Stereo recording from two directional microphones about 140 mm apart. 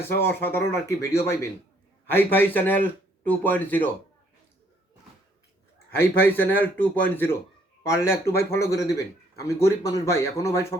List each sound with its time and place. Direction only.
0.2 s a man's voice: 15° left (ahead or behind)
6.0 s a man's voice: 15° left (ahead or behind)